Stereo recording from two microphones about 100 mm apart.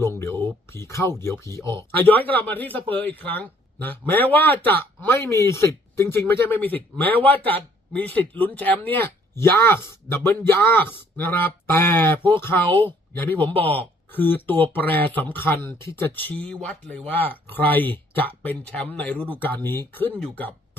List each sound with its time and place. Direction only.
0.0 s a sound: 25° left (ahead or behind)
1.2 s speech: 30° left (ahead or behind)
1.7 s speech: 20° left (ahead or behind)